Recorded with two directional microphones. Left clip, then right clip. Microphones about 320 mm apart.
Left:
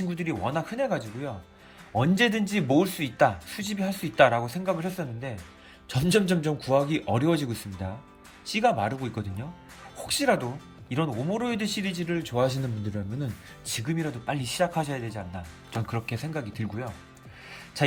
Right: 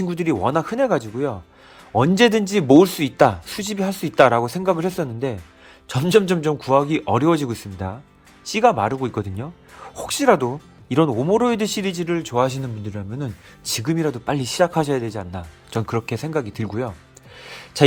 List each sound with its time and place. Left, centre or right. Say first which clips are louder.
0.1 s a man's voice: right 10 dB; centre
17.4 s music: right 10 dB; centre